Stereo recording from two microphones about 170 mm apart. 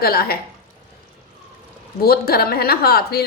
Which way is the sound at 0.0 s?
65° left (ahead or behind).